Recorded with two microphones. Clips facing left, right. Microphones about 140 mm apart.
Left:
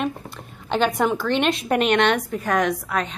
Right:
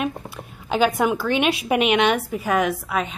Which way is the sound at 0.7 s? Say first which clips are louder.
Right 1 dB; 5° right (ahead or behind).